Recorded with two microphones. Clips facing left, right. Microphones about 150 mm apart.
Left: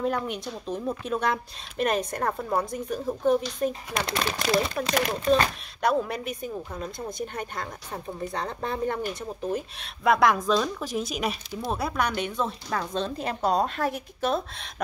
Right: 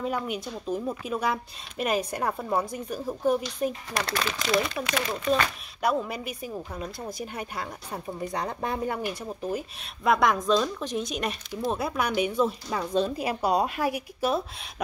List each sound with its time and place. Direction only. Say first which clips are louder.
0.0 s a woman's voice: left 2 dB; 5° right (ahead or behind)
3.9 s speech: left 1 dB; 25° left (ahead or behind)
5.8 s a woman's voice: left 2 dB; 5° right (ahead or behind)